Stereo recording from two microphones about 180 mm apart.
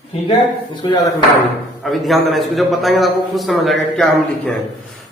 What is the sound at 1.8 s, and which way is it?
A man's voice, centre (ahead or behind).